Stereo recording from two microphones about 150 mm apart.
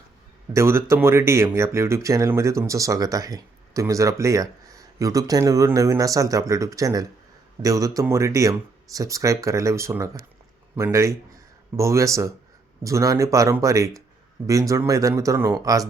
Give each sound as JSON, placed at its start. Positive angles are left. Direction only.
{"t": 0.5, "sound": "speech", "side_deg": -20}